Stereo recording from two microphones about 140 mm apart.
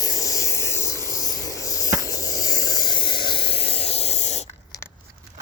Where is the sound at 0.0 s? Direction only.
25° left (ahead or behind); by 4.4 s 55° left (ahead or behind).